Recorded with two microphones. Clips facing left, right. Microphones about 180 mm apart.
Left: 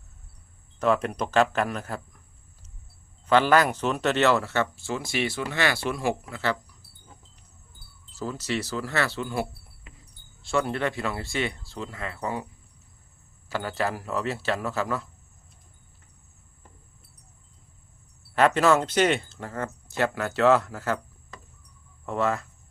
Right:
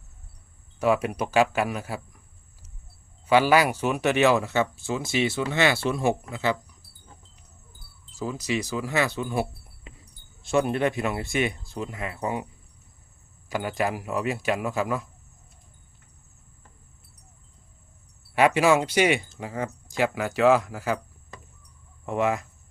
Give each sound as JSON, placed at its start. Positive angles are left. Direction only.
{"t": 0.8, "sound": "speech", "side_deg": -10}
{"t": 3.2, "sound": "speech", "side_deg": -10}
{"t": 8.1, "sound": "speech", "side_deg": -10}
{"t": 13.5, "sound": "speech", "side_deg": -15}
{"t": 18.3, "sound": "speech", "side_deg": -10}